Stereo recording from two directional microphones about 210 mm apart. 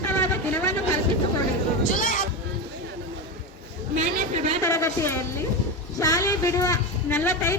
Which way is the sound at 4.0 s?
35° right (ahead or behind).